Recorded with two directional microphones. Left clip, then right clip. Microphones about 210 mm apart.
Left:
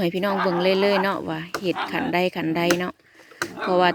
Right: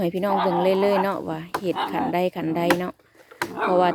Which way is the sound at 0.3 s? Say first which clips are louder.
Right 4 dB; 40° left (ahead or behind).